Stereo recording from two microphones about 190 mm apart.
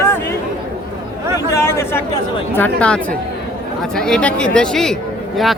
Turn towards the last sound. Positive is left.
turn(degrees=0)  # may be behind; listen again after turning